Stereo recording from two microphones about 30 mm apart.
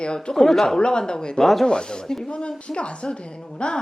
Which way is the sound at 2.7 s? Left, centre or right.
Left.